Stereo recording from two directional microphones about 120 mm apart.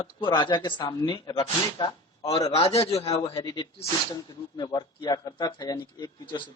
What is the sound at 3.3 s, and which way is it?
Speech, 35° left (ahead or behind).